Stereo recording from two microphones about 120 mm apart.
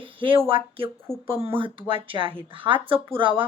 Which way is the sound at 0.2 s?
45° right (ahead or behind).